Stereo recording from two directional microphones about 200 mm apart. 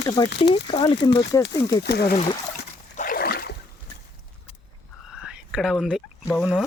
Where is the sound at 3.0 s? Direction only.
45° left (ahead or behind).